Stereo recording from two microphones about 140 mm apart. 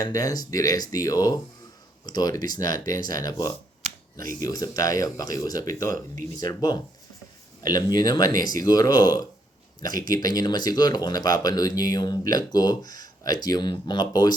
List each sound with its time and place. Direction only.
0.0 s speech: 25° left (ahead or behind)
3.8 s finger snapping: 75° right (ahead or behind)
4.4 s speech: 25° left (ahead or behind)